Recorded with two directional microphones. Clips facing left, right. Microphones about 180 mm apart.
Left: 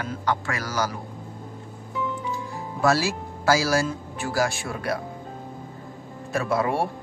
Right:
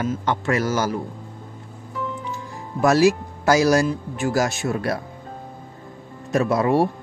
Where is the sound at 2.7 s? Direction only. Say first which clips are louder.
Right 6 dB; 15° right (ahead or behind).